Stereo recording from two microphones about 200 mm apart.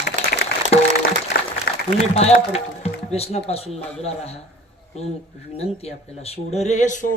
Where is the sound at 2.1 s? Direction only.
30° left (ahead or behind).